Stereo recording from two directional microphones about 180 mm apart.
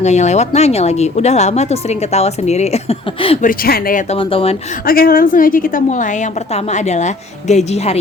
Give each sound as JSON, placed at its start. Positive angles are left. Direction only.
{"t": 0.0, "sound": "speech", "side_deg": 40}
{"t": 3.4, "sound": "a woman's voice", "side_deg": 55}
{"t": 4.1, "sound": "speech", "side_deg": 30}
{"t": 4.9, "sound": "a woman's voice", "side_deg": 55}